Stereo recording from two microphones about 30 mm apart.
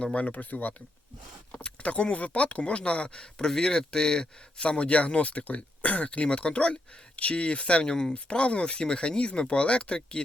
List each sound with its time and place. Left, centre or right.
0.2 s speech: left
1.8 s speech: left
3.3 s speech: left
4.6 s speech: left
6.2 s speech: left
7.9 s speech: left
8.3 s speech: left